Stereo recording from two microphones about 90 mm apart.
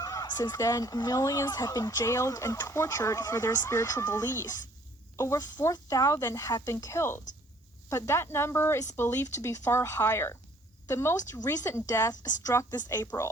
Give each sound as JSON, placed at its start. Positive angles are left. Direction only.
{"t": 0.0, "sound": "speech", "side_deg": 40}